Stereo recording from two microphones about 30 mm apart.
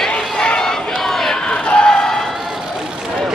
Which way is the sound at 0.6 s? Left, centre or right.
Left.